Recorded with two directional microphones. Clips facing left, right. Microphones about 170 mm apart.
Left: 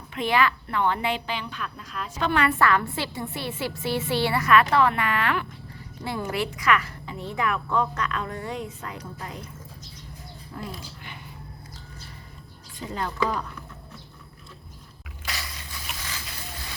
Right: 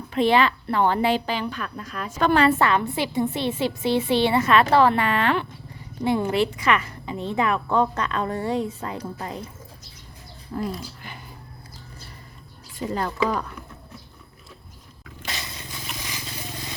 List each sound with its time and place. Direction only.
0.1 s a woman's voice: 30° right (ahead or behind); by 2.3 s 50° right (ahead or behind)
2.3 s a woman's voice: 30° right (ahead or behind)
6.2 s a woman's voice: 30° right (ahead or behind)
10.5 s a woman's voice: 35° right (ahead or behind)
12.9 s a woman's voice: 40° right (ahead or behind)
15.3 s vehicle: 25° right (ahead or behind)